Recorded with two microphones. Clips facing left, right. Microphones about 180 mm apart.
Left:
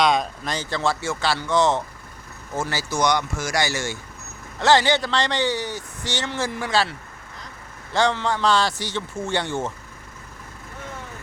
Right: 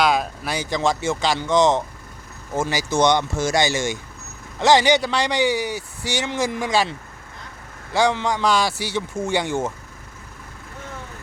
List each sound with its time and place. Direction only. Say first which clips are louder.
0.0 s speech: even; 5° right (ahead or behind)
7.9 s speech: right 2 dB; 10° right (ahead or behind)